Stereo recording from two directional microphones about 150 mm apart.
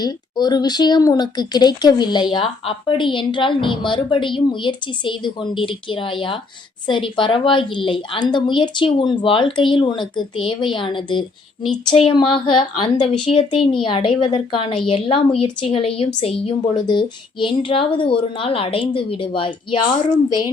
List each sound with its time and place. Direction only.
0.0 s a woman's voice: 30° left (ahead or behind)